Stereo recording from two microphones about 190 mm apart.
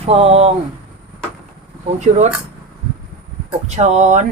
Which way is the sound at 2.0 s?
35° right (ahead or behind).